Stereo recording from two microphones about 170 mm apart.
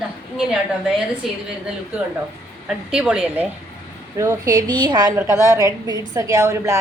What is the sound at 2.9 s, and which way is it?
Speech, 5° right (ahead or behind).